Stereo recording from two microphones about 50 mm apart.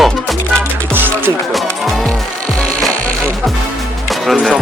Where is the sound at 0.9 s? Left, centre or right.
Right.